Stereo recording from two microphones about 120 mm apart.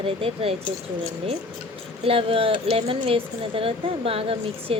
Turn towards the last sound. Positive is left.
turn(degrees=-50)  # may be behind; listen again after turning